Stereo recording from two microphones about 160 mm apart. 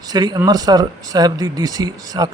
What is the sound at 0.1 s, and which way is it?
Speech, 25° right (ahead or behind).